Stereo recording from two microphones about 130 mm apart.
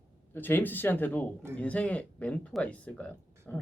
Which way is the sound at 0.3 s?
15° left (ahead or behind).